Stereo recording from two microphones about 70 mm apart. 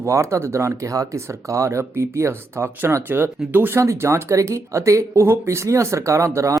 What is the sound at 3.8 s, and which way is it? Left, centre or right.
Speech, right.